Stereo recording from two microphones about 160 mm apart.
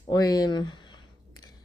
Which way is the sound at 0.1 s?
25° left (ahead or behind).